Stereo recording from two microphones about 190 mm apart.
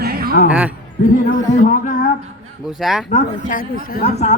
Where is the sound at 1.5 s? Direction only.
45° left (ahead or behind).